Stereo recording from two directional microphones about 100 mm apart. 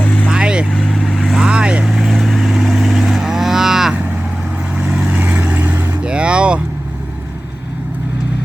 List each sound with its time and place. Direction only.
0.0 s vehicle: 15° left (ahead or behind)
0.3 s vehicle: 10° right (ahead or behind)
0.7 s vehicle: 5° left (ahead or behind)
1.4 s vehicle: 10° right (ahead or behind)
6.1 s vehicle: 10° right (ahead or behind)